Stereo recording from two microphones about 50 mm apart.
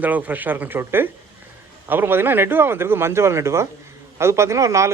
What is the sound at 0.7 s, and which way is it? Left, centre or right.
Speech, right.